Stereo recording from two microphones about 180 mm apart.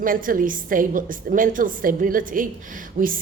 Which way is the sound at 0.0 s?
50° right (ahead or behind).